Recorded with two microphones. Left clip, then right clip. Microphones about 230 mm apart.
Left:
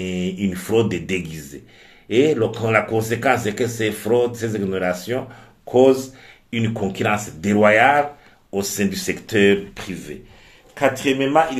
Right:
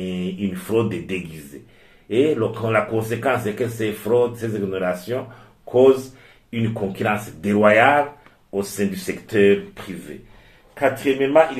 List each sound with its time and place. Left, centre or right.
0.0 s speech: left
6.5 s speech: left
10.7 s speech: left